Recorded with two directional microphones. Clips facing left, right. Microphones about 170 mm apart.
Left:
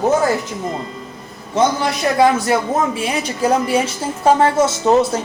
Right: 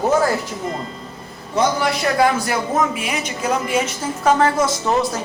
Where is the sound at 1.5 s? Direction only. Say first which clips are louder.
Left 2 dB; 20° left (ahead or behind).